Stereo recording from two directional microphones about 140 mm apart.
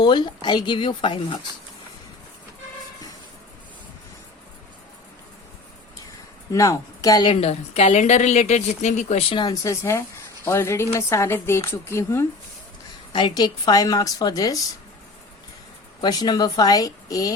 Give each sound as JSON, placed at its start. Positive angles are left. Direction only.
{"t": 0.0, "sound": "speech", "side_deg": 35}
{"t": 6.5, "sound": "a woman's voice", "side_deg": 25}
{"t": 7.3, "sound": "a woman's voice", "side_deg": 50}
{"t": 9.5, "sound": "a woman's voice", "side_deg": 20}
{"t": 13.1, "sound": "a woman's voice", "side_deg": 30}
{"t": 16.0, "sound": "a woman's voice", "side_deg": 30}